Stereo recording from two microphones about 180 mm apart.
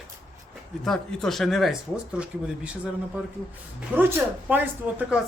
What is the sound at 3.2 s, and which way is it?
Speech, 10° right (ahead or behind).